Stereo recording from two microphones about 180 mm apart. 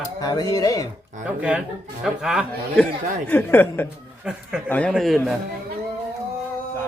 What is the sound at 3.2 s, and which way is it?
Speech, 10° left (ahead or behind).